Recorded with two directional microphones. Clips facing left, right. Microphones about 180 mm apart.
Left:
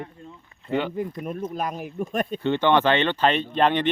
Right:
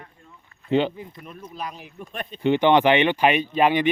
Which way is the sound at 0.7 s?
25° right (ahead or behind).